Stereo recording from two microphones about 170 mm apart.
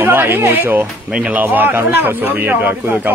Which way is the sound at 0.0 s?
10° right (ahead or behind).